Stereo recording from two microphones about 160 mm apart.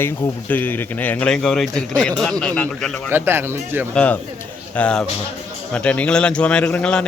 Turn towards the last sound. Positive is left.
turn(degrees=5)  # may be behind; listen again after turning